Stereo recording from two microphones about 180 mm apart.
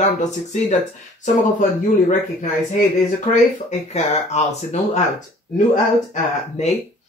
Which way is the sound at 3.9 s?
40° left (ahead or behind).